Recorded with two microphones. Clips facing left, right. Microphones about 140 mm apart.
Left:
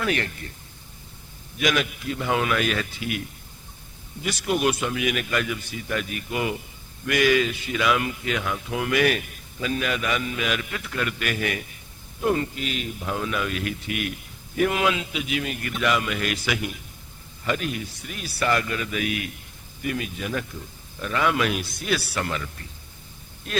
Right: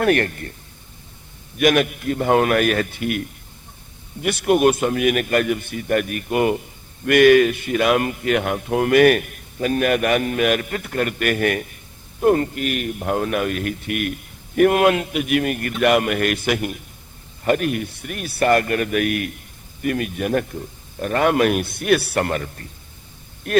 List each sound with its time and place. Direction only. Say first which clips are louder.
0.0 s a man's voice: right 8 dB; 55° right (ahead or behind)
1.5 s a man's voice: right 7 dB; 55° right (ahead or behind)